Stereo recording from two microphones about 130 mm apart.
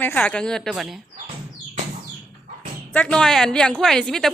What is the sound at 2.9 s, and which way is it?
A woman's voice, 5° left (ahead or behind).